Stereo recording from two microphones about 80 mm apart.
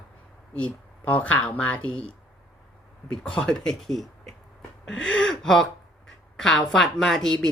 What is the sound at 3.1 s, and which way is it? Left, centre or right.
A woman's voice, centre.